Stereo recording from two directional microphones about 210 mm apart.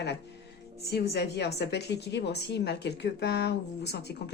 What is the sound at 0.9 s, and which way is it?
A woman's voice, 50° left (ahead or behind).